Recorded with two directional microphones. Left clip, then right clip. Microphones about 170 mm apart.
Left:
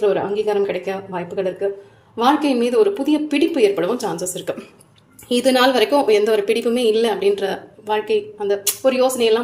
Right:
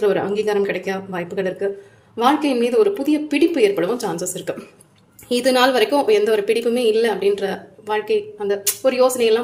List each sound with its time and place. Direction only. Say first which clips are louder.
0.0 s a woman's voice: even; 20° right (ahead or behind)